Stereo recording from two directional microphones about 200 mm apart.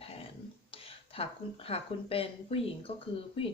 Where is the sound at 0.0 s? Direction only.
30° left (ahead or behind).